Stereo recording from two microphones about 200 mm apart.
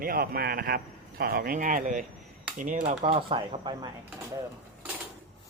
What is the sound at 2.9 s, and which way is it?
Speech, 30° right (ahead or behind).